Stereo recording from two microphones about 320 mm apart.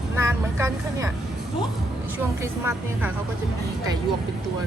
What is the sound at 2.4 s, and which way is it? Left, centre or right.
Speech, centre.